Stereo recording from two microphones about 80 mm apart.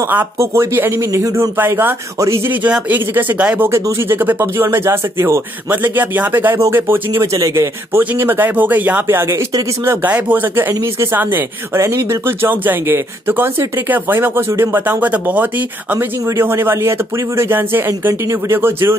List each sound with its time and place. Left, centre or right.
0.4 s speech: right
1.6 s speech: right
2.1 s speech: right
2.9 s speech: right
7.2 s speech: right
8.2 s speech: right
9.0 s speech: right
10.7 s speech: right
11.1 s speech: right
11.8 s speech: right; by 15.4 s centre
16.3 s speech: right